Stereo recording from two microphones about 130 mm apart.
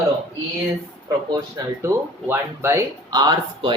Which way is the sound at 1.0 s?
30° right (ahead or behind).